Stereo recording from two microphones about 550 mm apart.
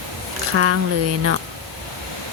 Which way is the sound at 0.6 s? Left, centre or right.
Right.